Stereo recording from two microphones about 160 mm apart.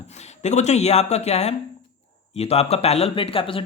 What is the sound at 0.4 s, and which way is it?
Speech, 45° left (ahead or behind).